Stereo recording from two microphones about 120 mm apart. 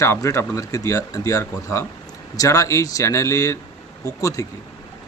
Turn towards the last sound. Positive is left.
turn(degrees=25)  # may be behind; listen again after turning